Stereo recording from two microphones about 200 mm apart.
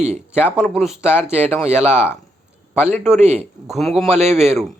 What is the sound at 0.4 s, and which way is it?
Speech, 5° right (ahead or behind).